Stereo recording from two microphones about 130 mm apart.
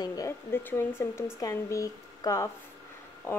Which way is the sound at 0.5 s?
15° left (ahead or behind).